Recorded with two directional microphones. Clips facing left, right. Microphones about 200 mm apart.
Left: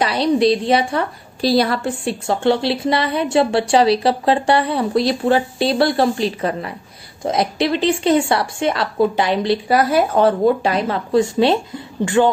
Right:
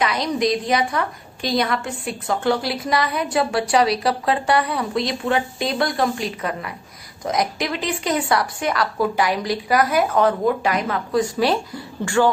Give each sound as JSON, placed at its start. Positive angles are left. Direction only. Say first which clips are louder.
{"t": 0.0, "sound": "a woman's voice", "louder": "left 5 dB", "side_deg": 30}